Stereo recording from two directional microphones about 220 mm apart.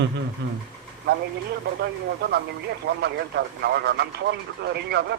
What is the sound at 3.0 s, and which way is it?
Speech, 50° right (ahead or behind).